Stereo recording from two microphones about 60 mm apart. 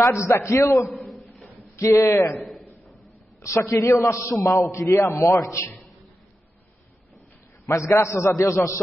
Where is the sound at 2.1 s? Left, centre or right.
Left.